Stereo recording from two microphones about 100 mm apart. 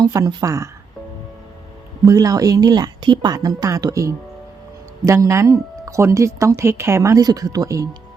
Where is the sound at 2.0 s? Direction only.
35° right (ahead or behind).